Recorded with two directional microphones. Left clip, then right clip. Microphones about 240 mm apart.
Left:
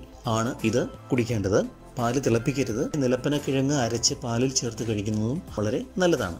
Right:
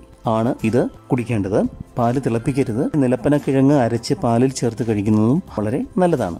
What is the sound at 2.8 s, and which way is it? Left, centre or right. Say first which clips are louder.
Speech: right 8 dB; right.